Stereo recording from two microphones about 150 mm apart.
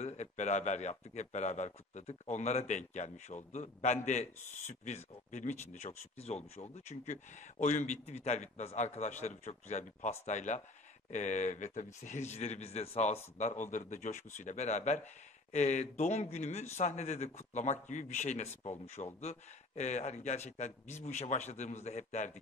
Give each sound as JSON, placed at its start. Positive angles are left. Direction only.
{"t": 0.0, "sound": "a man's voice", "side_deg": 50}